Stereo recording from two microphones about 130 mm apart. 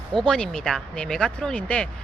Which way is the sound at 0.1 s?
5° left (ahead or behind).